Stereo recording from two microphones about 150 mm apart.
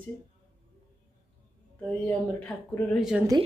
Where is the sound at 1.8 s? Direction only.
10° left (ahead or behind).